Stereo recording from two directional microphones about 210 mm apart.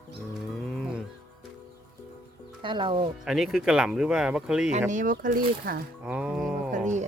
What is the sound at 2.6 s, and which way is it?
Speech, 20° right (ahead or behind).